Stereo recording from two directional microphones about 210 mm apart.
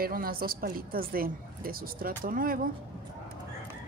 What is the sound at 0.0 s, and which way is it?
A woman's voice, 45° right (ahead or behind).